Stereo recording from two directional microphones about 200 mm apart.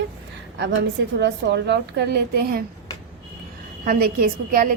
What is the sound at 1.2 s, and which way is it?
A woman's voice, 60° right (ahead or behind).